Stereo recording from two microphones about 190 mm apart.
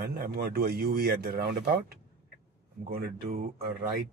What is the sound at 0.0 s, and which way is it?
Speech, 50° right (ahead or behind).